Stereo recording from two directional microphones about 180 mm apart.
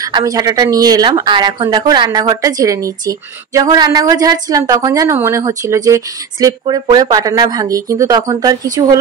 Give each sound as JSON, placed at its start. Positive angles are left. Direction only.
{"t": 0.0, "sound": "speech", "side_deg": -20}